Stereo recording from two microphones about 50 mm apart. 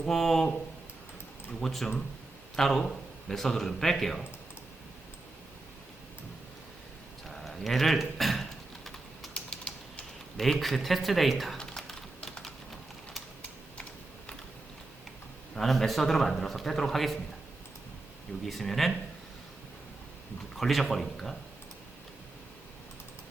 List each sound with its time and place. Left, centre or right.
0.0 s speech: centre
1.6 s a man's voice: centre
7.3 s typing: centre
9.3 s typing: centre
10.3 s a man's voice: centre
11.5 s typing: centre
15.5 s a man's voice: centre
18.4 s a man's voice: centre
20.6 s a man's voice: centre